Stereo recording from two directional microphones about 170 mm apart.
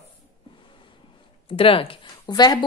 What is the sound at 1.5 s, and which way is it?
Speech, 35° left (ahead or behind).